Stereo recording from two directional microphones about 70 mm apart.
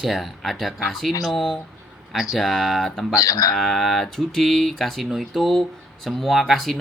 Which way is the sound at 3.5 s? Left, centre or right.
Centre.